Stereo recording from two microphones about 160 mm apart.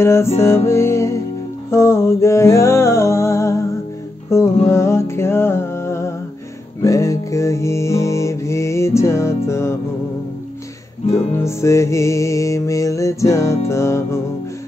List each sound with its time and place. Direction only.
0.0 s music: 15° left (ahead or behind)
11.1 s music: 20° left (ahead or behind)